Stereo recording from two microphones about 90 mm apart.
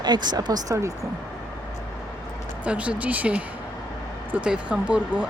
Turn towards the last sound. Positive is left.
turn(degrees=-15)  # may be behind; listen again after turning